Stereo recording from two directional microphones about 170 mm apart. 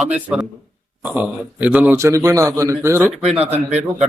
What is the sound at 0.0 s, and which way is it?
A man's voice, 5° right (ahead or behind).